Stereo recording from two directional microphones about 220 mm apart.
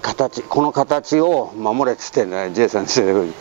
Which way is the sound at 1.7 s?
20° right (ahead or behind).